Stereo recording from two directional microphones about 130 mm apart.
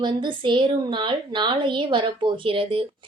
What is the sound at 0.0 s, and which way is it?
Speech, 35° right (ahead or behind).